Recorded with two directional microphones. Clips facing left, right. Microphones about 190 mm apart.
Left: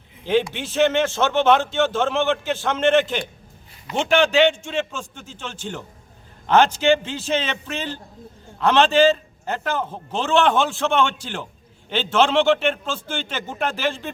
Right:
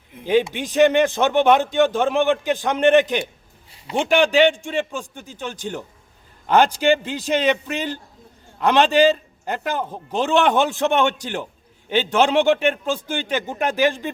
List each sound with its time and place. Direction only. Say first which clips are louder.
0.5 s a man's voice: right 3 dB; 15° right (ahead or behind)